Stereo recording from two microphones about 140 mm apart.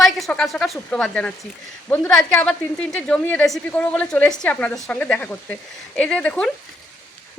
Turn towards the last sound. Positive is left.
turn(degrees=5)  # may be behind; listen again after turning